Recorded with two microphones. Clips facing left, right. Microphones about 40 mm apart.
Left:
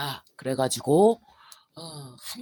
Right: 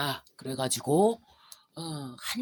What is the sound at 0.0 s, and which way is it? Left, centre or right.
Speech, centre.